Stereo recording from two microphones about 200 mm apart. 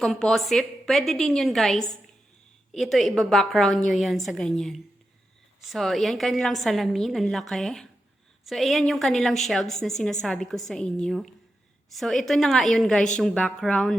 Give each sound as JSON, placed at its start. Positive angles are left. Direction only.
{"t": 0.0, "sound": "a woman's voice", "side_deg": 0}